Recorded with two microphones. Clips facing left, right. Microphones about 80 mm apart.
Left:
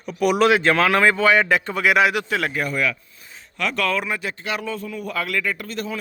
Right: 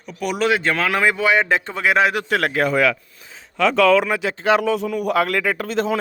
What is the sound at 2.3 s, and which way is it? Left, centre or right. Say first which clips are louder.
Speech: right 4 dB; right.